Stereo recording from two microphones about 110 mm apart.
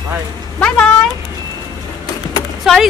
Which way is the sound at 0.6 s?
10° left (ahead or behind).